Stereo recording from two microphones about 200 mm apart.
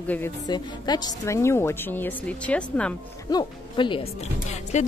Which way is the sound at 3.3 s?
20° left (ahead or behind).